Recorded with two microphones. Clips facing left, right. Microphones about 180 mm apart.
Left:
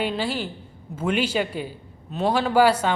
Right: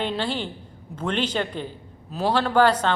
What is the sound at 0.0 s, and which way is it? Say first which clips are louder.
A man's voice: left 1 dB; 5° left (ahead or behind).